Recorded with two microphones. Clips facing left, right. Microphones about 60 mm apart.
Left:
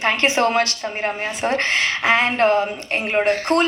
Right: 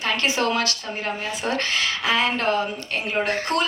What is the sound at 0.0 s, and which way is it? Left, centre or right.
A woman's voice, left.